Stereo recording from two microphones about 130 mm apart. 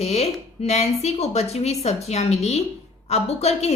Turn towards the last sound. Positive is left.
turn(degrees=55)  # may be behind; listen again after turning